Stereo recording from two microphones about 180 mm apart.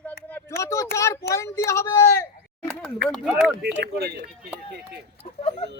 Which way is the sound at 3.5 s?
70° right (ahead or behind).